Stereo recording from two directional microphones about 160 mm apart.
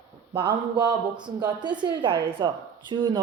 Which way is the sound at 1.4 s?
25° right (ahead or behind).